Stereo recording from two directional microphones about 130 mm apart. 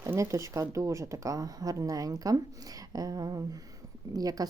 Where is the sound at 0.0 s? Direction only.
20° right (ahead or behind).